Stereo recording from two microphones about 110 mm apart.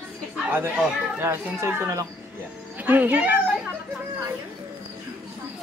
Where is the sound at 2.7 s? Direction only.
15° right (ahead or behind).